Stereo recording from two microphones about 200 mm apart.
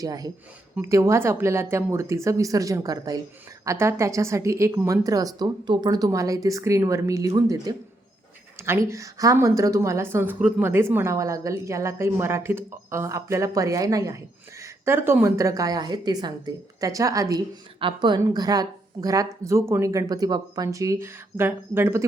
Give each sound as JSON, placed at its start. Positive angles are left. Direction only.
{"t": 0.0, "sound": "a woman's voice", "side_deg": -20}